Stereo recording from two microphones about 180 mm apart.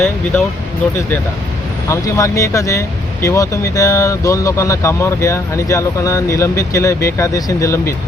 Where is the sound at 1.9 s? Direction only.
15° left (ahead or behind).